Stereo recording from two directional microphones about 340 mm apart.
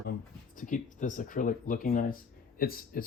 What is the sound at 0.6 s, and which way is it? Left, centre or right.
Speech, left.